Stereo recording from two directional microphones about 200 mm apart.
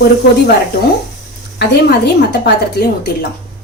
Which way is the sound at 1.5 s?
55° left (ahead or behind).